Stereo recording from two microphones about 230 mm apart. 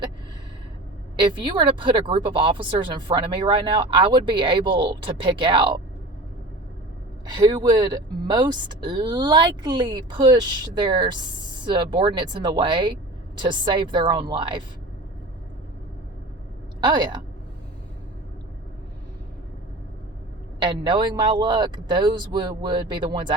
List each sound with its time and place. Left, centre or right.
1.2 s speech: centre
7.3 s speech: centre
16.8 s speech: centre
20.6 s speech: centre